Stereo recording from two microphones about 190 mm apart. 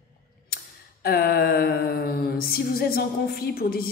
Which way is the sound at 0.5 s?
55° left (ahead or behind).